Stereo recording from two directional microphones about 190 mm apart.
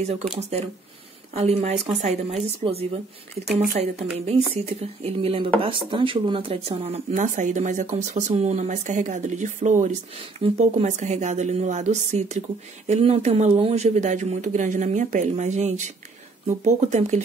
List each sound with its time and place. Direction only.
0.4 s speech: 35° right (ahead or behind)